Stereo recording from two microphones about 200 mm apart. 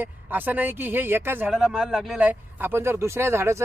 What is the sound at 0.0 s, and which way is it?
Speech, 10° right (ahead or behind).